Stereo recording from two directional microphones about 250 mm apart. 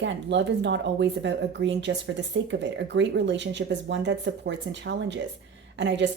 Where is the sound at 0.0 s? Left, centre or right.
Right.